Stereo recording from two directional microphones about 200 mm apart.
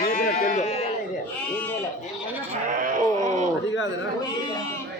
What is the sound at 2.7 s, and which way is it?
Wail, 40° right (ahead or behind).